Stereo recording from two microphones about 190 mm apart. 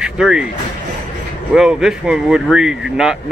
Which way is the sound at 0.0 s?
5° right (ahead or behind).